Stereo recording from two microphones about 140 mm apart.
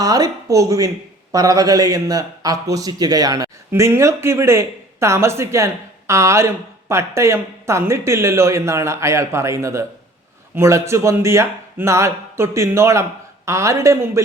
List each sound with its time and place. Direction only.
0.0 s a man's voice: 25° right (ahead or behind)